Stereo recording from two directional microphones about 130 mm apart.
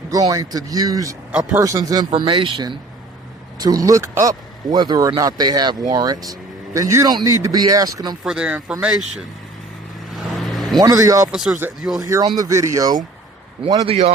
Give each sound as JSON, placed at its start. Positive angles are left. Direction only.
{"t": 0.1, "sound": "a man's voice", "side_deg": -25}
{"t": 1.3, "sound": "speech", "side_deg": -5}
{"t": 1.5, "sound": "a man's voice", "side_deg": -25}
{"t": 8.2, "sound": "speech", "side_deg": -5}
{"t": 10.1, "sound": "vehicle", "side_deg": 0}
{"t": 10.8, "sound": "a man's voice", "side_deg": -25}
{"t": 11.3, "sound": "speech", "side_deg": -5}
{"t": 11.9, "sound": "a man's voice", "side_deg": -25}
{"t": 13.8, "sound": "speech", "side_deg": -50}